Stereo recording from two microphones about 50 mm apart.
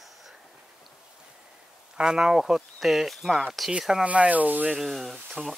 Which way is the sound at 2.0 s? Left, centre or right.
Centre.